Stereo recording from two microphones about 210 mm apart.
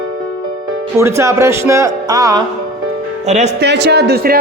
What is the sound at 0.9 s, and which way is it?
Speech, 15° right (ahead or behind).